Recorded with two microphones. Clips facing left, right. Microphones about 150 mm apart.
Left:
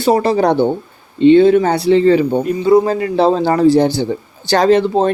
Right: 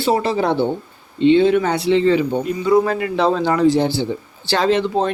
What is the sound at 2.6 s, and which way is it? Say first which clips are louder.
A man's voice: left 4 dB; 25° left (ahead or behind).